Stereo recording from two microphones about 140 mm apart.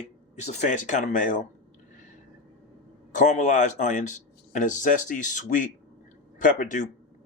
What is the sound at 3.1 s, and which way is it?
Speech, 65° left (ahead or behind).